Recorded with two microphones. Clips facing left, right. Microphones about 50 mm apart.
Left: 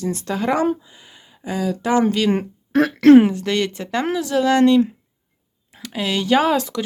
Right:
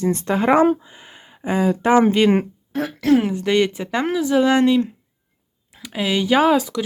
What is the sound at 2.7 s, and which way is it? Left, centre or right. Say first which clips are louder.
Speech: left 8 dB; left.